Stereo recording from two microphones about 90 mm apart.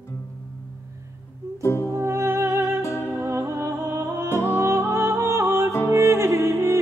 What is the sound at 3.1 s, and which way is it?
Music, 30° right (ahead or behind).